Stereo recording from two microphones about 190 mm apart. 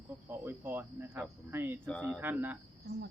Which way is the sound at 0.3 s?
10° right (ahead or behind).